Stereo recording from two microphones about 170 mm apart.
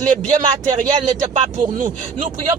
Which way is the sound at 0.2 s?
45° right (ahead or behind).